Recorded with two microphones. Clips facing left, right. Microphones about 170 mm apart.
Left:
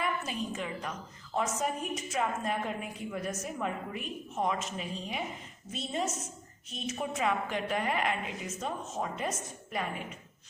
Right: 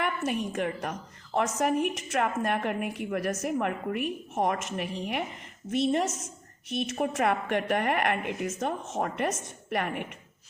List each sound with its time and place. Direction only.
0.0 s a woman's voice: 70° right (ahead or behind)